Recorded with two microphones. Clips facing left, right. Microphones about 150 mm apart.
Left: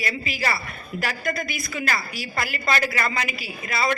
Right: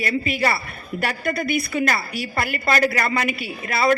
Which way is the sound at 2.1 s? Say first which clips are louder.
Right 4 dB; 55° right (ahead or behind).